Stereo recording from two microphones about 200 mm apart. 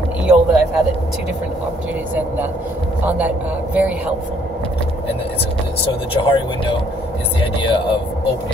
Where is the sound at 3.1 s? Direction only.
10° right (ahead or behind).